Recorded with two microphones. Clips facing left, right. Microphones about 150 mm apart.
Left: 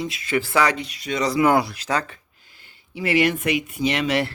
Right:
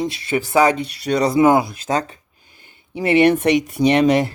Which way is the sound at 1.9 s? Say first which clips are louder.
Right 5 dB; 35° right (ahead or behind).